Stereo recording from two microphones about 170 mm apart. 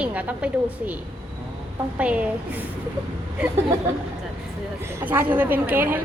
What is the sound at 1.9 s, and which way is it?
Speech, 5° right (ahead or behind).